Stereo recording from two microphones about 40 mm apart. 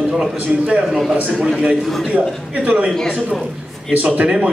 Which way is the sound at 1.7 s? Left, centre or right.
Centre.